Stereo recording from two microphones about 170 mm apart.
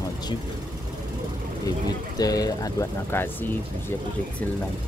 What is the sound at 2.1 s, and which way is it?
Speech, 20° left (ahead or behind).